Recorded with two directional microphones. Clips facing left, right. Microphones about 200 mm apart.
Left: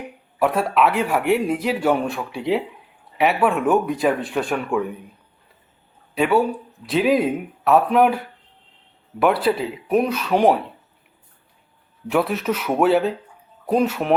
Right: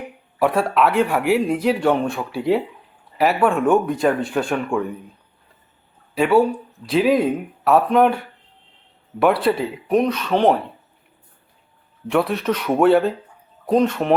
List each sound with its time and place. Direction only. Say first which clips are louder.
0.3 s speech: right 1 dB; centre (ahead or behind)
6.1 s speech: right 2 dB; centre (ahead or behind)
12.0 s speech: right 1 dB; 5° left (ahead or behind)